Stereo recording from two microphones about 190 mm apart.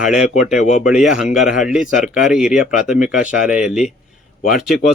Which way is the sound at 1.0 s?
Centre (ahead or behind).